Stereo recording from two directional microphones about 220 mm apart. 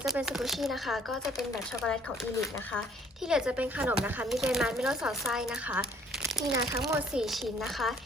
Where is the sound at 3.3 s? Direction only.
5° right (ahead or behind).